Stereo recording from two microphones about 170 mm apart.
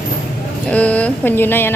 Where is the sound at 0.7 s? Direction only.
10° left (ahead or behind).